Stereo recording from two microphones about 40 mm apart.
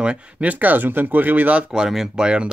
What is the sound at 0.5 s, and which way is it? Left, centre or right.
Speech, right.